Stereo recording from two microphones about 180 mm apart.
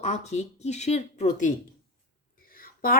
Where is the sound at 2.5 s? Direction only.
55° left (ahead or behind).